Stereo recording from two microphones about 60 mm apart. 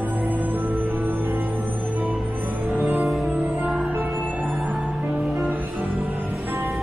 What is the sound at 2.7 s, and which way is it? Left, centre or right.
Music, right.